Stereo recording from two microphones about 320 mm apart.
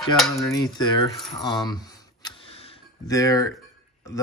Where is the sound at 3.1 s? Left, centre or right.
Centre.